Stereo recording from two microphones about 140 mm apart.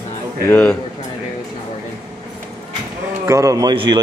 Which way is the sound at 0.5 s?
10° left (ahead or behind).